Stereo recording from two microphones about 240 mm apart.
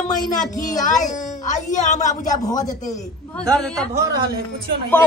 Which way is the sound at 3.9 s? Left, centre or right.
Centre.